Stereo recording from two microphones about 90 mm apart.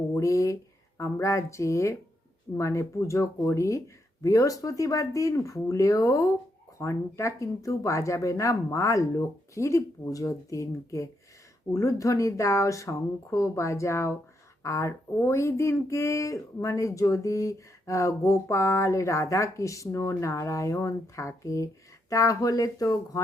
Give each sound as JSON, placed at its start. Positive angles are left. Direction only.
{"t": 0.1, "sound": "speech", "side_deg": 35}